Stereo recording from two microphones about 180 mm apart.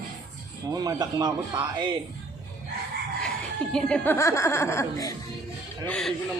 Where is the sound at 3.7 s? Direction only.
5° left (ahead or behind).